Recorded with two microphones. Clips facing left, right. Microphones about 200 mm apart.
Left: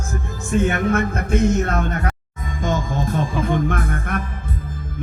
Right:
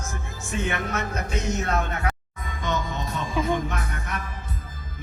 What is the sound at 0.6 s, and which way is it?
Music, 50° left (ahead or behind).